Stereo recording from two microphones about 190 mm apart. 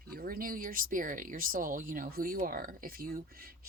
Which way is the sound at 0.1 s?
50° right (ahead or behind).